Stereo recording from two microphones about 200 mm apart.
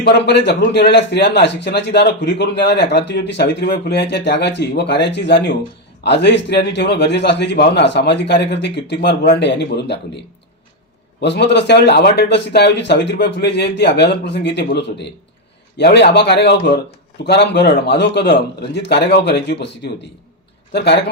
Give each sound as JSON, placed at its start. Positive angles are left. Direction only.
{"t": 0.0, "sound": "speech", "side_deg": 55}
{"t": 11.2, "sound": "speech", "side_deg": 60}